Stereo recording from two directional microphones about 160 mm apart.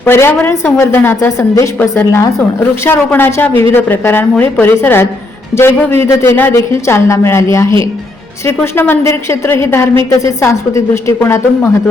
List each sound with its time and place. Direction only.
0.0 s a man's voice: 15° left (ahead or behind)